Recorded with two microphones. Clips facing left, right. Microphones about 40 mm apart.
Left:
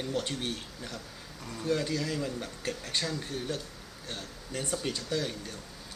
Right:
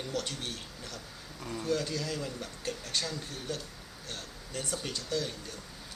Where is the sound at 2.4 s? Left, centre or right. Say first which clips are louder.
Left 2 dB; left.